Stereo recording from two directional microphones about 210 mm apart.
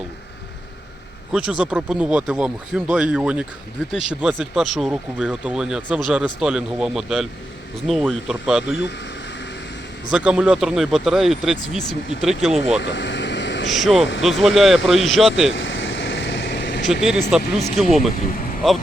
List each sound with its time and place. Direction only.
1.3 s speech: 5° right (ahead or behind)
8.6 s speech: 55° left (ahead or behind)
10.1 s speech: 5° right (ahead or behind)
12.8 s vehicle: 60° left (ahead or behind)
13.7 s speech: centre (ahead or behind)
15.5 s vehicle: 60° left (ahead or behind)
16.9 s speech: centre (ahead or behind)